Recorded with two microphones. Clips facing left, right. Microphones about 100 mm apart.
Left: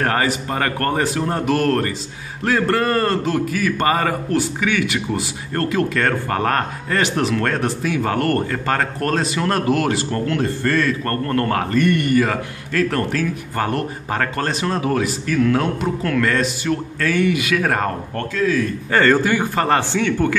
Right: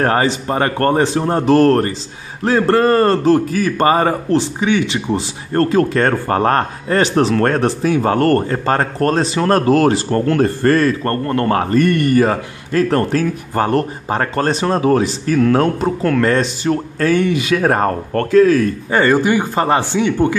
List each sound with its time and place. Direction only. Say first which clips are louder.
0.0 s a man's voice: right 4 dB; 30° right (ahead or behind)
11.1 s speech: right 3 dB; 25° right (ahead or behind)
11.8 s a man's voice: right 2 dB; 40° right (ahead or behind)
18.1 s a man's voice: right 11 dB; 50° right (ahead or behind)
18.9 s speech: right 1 dB; 15° right (ahead or behind)